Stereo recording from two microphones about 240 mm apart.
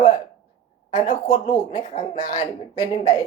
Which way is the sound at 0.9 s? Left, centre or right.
Left.